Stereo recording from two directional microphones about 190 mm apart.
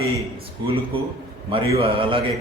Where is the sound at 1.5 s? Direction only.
30° right (ahead or behind).